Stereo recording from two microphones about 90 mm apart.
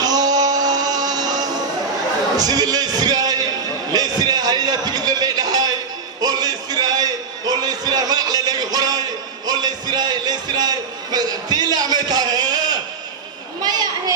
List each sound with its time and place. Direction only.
0.0 s music: 45° right (ahead or behind)
2.3 s a man's voice: 45° right (ahead or behind)
6.2 s a sound: 50° right (ahead or behind)